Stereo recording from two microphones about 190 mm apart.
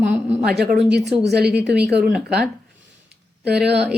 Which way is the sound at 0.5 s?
55° right (ahead or behind).